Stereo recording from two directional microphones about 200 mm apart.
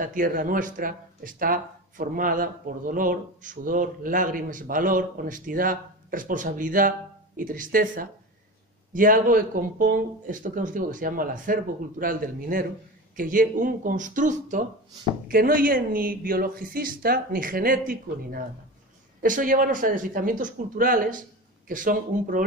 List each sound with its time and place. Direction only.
0.0 s speech: 45° right (ahead or behind)